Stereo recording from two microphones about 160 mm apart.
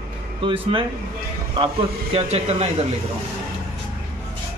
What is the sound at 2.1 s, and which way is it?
Speech, 35° right (ahead or behind).